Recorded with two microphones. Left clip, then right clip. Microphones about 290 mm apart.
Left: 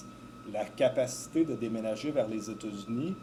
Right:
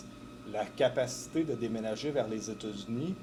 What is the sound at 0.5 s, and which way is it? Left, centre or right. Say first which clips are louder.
Speech: left 1 dB; right.